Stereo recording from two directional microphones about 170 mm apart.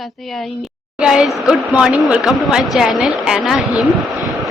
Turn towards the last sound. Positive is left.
turn(degrees=0)  # may be behind; listen again after turning